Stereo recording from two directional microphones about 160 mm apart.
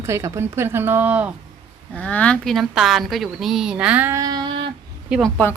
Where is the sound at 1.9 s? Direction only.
10° left (ahead or behind); by 4.7 s 30° right (ahead or behind).